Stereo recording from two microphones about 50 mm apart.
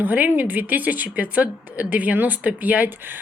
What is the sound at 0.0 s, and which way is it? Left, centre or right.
Speech, right.